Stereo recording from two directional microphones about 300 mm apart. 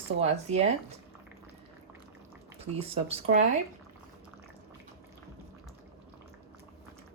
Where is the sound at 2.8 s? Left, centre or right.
Centre.